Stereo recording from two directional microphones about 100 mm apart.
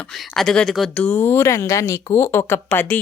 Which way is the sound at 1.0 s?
20° left (ahead or behind).